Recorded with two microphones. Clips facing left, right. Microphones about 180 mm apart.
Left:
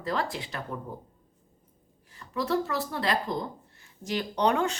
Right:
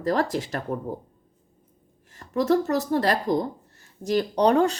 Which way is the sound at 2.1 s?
40° right (ahead or behind).